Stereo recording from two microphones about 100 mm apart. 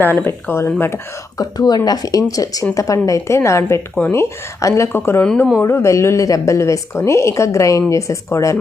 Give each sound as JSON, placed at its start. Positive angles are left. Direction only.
{"t": 0.0, "sound": "speech", "side_deg": 20}
{"t": 1.4, "sound": "a woman's voice", "side_deg": 40}